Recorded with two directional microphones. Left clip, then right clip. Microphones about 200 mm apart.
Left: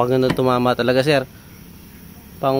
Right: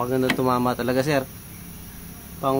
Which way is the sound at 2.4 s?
40° left (ahead or behind).